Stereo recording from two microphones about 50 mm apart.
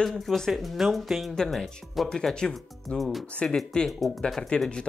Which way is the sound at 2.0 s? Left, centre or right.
Centre.